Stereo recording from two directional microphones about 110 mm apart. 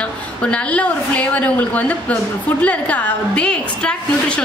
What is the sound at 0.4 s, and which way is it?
A woman's voice, 10° left (ahead or behind).